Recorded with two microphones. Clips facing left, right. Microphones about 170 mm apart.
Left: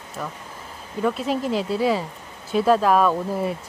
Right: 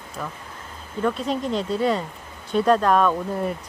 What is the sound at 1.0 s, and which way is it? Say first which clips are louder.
Speech: left 1 dB; 5° left (ahead or behind).